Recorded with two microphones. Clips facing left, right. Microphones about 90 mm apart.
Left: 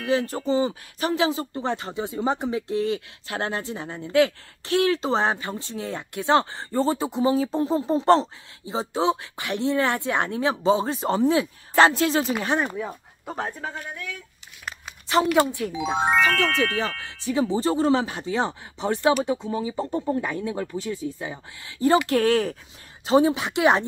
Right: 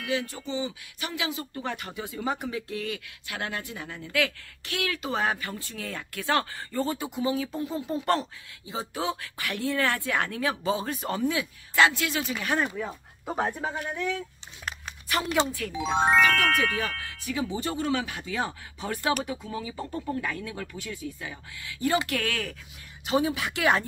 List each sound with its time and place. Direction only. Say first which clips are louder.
0.0 s speech: left 7 dB; 35° left (ahead or behind)
12.7 s a sound: left 3 dB; 5° left (ahead or behind)
13.3 s speech: right 2 dB; 10° right (ahead or behind)
15.7 s speech: right 3 dB; 5° left (ahead or behind)
16.3 s speech: left 2 dB; 25° left (ahead or behind)